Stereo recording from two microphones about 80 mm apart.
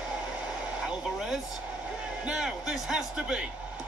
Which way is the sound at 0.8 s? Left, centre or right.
Centre.